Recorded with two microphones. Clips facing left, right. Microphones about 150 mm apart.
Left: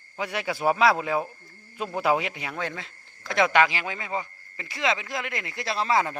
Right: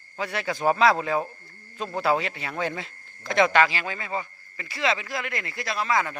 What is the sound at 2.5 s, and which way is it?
Speech, 10° right (ahead or behind).